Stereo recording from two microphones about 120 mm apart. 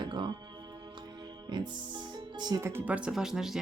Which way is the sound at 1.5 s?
40° right (ahead or behind).